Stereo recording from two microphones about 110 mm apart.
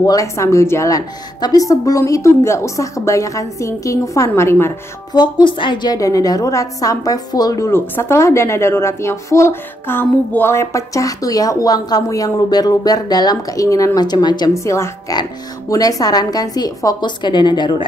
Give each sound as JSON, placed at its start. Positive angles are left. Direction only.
{"t": 0.0, "sound": "speech", "side_deg": 30}
{"t": 5.1, "sound": "a woman's voice", "side_deg": 45}
{"t": 14.6, "sound": "a woman's voice", "side_deg": 25}